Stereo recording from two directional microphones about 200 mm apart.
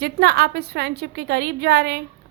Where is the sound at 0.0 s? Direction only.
55° right (ahead or behind).